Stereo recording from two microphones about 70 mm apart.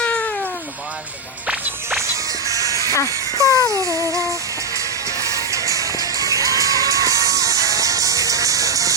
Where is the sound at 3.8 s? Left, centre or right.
Right.